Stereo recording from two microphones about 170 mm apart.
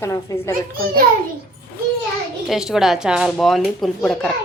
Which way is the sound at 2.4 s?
Centre (ahead or behind).